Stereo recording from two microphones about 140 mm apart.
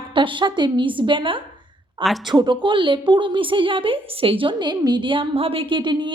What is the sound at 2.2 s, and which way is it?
A woman's voice, 35° right (ahead or behind).